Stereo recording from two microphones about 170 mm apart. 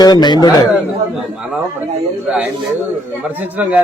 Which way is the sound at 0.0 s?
25° left (ahead or behind).